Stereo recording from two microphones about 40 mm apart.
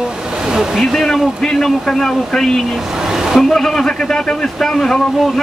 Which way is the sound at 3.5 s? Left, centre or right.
Centre.